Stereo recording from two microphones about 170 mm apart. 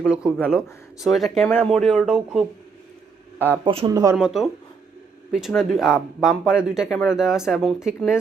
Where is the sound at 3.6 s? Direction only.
35° right (ahead or behind).